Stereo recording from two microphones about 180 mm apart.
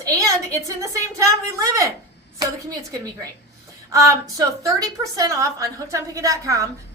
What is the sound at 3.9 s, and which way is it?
A woman's voice, 20° right (ahead or behind).